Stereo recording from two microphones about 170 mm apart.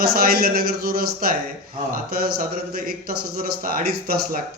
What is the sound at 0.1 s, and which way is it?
A man's voice, 60° right (ahead or behind).